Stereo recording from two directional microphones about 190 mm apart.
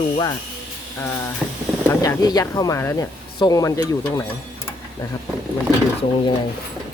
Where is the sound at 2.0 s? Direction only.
20° left (ahead or behind).